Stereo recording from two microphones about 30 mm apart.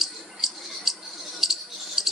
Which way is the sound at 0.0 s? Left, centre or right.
Centre.